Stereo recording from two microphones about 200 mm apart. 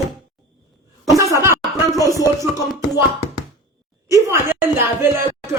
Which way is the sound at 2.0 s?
15° left (ahead or behind).